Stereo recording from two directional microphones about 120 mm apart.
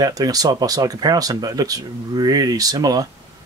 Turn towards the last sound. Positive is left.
turn(degrees=-30)  # may be behind; listen again after turning